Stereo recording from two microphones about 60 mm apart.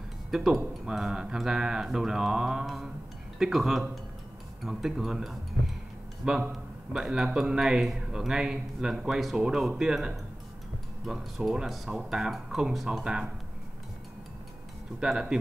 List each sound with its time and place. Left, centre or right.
0.3 s speech: centre
0.8 s mantra: centre
2.6 s speech: centre
4.6 s mantra: centre
11.1 s speech: centre
12.0 s mantra: centre
15.0 s mantra: centre